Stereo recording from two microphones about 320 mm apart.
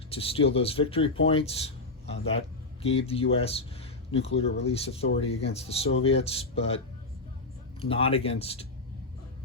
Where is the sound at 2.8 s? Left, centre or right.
Centre.